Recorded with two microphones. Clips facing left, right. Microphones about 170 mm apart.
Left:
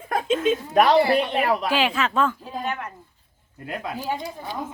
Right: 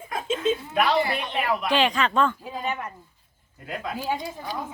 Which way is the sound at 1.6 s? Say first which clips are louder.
Even; 5° left (ahead or behind).